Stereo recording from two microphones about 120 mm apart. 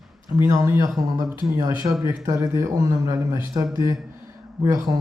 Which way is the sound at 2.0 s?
25° right (ahead or behind).